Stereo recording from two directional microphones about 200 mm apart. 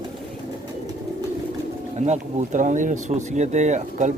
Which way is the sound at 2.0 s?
35° right (ahead or behind).